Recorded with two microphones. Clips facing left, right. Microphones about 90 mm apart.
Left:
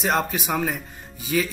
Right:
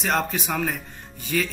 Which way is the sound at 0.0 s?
5° left (ahead or behind).